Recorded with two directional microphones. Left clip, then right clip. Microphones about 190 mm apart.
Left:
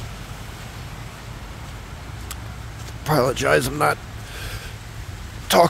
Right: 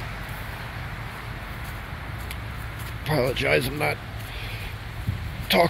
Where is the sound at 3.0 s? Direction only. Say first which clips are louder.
Left 5 dB; 45° left (ahead or behind).